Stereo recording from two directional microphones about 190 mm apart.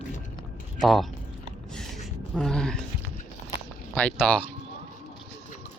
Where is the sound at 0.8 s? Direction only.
Centre (ahead or behind).